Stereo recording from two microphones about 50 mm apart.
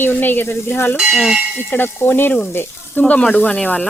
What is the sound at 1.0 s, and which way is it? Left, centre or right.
Bell, centre.